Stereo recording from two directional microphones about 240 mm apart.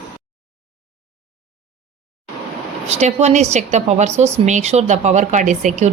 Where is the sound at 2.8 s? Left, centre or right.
Right.